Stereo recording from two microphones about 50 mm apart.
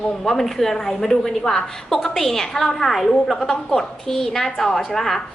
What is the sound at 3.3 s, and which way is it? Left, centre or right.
A woman's voice, centre.